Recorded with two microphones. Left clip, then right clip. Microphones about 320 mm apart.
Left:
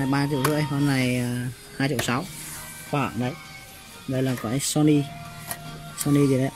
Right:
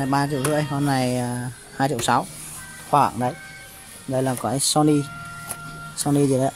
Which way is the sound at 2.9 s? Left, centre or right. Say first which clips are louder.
Right 9 dB; right.